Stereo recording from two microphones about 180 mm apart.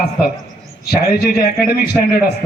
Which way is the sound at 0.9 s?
60° left (ahead or behind).